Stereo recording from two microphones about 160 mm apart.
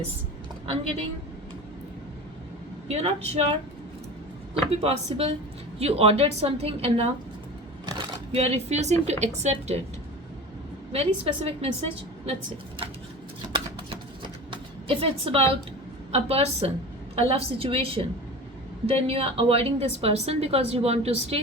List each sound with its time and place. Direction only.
2.8 s a woman's voice: 40° right (ahead or behind)
4.5 s a woman's voice: 40° right (ahead or behind)
10.9 s a woman's voice: 40° right (ahead or behind)
13.5 s a sound: 30° right (ahead or behind)
16.1 s a woman's voice: 40° right (ahead or behind)